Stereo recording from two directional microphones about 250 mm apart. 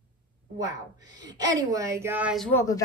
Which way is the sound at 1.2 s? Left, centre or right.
Centre.